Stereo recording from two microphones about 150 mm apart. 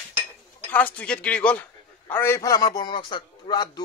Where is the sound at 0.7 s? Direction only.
10° left (ahead or behind).